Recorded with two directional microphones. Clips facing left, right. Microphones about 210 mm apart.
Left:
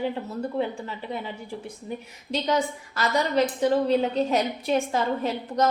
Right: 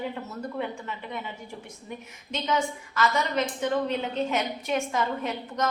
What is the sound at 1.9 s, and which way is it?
A woman's voice, 35° left (ahead or behind).